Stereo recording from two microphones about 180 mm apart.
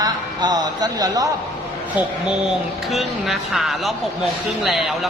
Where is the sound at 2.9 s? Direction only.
Centre (ahead or behind).